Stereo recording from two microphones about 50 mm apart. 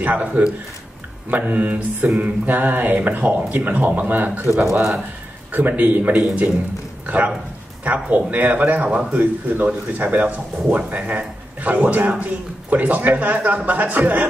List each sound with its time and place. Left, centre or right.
0.0 s a man's voice: right
5.5 s speech: right